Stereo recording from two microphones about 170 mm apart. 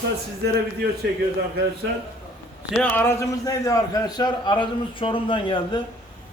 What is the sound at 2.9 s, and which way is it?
A man's voice, 15° left (ahead or behind).